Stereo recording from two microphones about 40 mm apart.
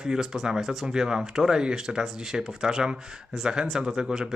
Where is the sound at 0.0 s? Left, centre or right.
Centre.